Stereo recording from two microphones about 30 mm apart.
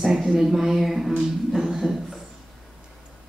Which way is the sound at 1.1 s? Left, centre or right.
Centre.